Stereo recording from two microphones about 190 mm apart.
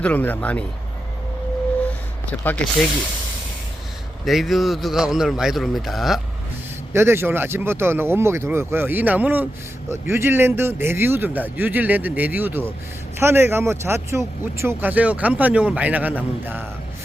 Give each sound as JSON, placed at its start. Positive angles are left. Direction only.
{"t": 0.0, "sound": "speech", "side_deg": 10}
{"t": 2.2, "sound": "speech", "side_deg": 10}
{"t": 4.3, "sound": "a man's voice", "side_deg": 0}
{"t": 6.9, "sound": "speech", "side_deg": -10}